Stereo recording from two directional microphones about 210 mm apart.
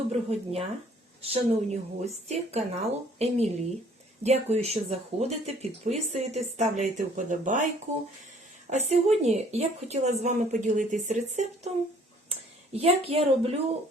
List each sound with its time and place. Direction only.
0.1 s speech: 30° right (ahead or behind)
8.7 s speech: 30° right (ahead or behind)